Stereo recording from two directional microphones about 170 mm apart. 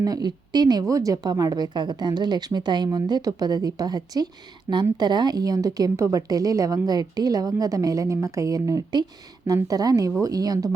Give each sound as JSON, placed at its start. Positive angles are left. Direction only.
{"t": 0.0, "sound": "a woman's voice", "side_deg": -25}